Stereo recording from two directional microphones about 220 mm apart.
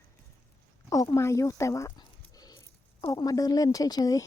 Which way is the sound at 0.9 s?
15° left (ahead or behind).